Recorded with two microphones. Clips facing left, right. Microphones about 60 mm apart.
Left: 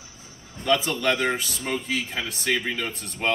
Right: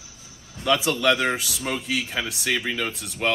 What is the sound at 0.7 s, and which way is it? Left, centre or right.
Speech, left.